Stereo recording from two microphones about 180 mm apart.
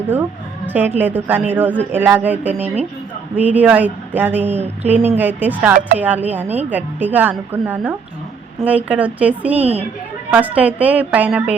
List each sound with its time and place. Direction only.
0.7 s a woman's voice: 10° right (ahead or behind)
9.6 s a woman's voice: 35° right (ahead or behind)
10.3 s a woman's voice: 10° right (ahead or behind)